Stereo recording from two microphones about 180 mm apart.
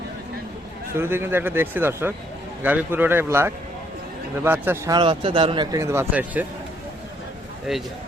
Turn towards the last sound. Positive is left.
turn(degrees=-5)  # may be behind; listen again after turning